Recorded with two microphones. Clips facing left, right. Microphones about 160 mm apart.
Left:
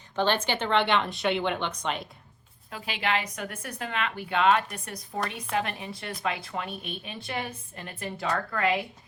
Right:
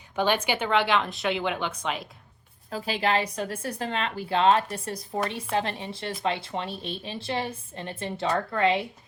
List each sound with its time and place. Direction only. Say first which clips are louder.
0.2 s speech: right 1 dB; 10° right (ahead or behind)
2.6 s a woman's voice: right 4 dB; 35° right (ahead or behind)